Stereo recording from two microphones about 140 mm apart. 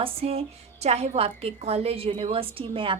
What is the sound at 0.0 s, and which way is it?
A woman's voice, 45° right (ahead or behind).